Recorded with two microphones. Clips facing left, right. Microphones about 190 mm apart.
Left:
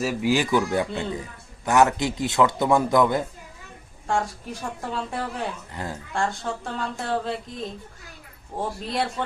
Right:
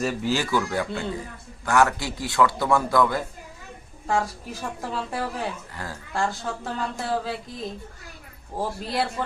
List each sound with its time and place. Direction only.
0.0 s speech: 10° left (ahead or behind)
4.0 s a woman's voice: centre (ahead or behind)
5.7 s speech: 20° left (ahead or behind)
6.1 s a woman's voice: centre (ahead or behind)